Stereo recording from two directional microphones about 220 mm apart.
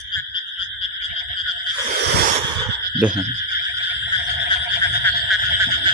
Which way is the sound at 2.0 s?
50° right (ahead or behind).